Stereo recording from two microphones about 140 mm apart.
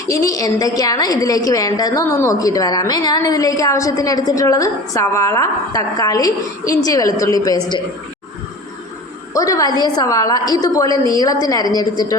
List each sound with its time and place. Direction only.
0.1 s a woman's voice: 20° left (ahead or behind)
9.3 s a woman's voice: 25° left (ahead or behind)